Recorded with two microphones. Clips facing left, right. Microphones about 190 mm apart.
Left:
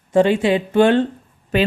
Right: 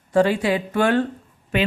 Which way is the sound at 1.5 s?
35° left (ahead or behind).